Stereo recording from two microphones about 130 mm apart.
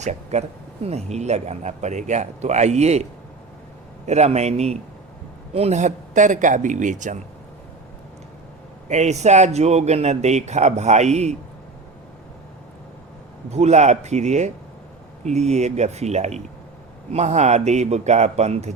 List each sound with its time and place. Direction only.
0.0 s speech: 60° right (ahead or behind)
8.9 s speech: 60° right (ahead or behind)
13.5 s speech: 60° right (ahead or behind)